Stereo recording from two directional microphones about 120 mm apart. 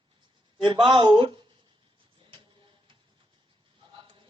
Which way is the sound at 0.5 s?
40° right (ahead or behind).